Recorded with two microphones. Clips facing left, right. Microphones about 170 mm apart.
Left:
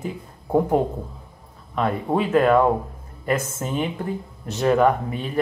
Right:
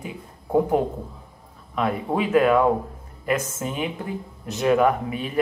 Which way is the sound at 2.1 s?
5° right (ahead or behind).